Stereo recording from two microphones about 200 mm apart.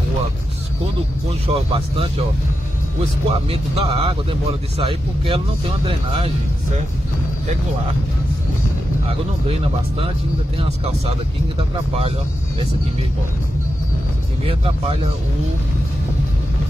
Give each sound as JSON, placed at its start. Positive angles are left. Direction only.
{"t": 1.5, "sound": "speech", "side_deg": -30}
{"t": 3.3, "sound": "speech", "side_deg": -30}
{"t": 9.0, "sound": "speech", "side_deg": -30}
{"t": 14.4, "sound": "speech", "side_deg": -30}